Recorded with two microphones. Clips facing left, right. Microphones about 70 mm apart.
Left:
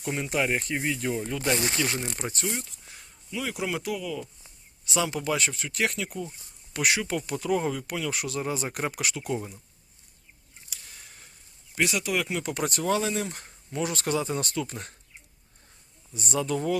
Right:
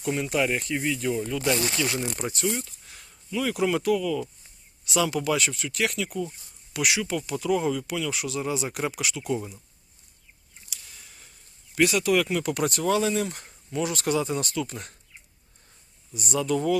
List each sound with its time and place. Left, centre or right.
0.0 s speech: left
2.0 s speech: left
4.9 s speech: left
10.7 s a sound: left
11.7 s speech: centre; by 14.9 s left
16.1 s speech: left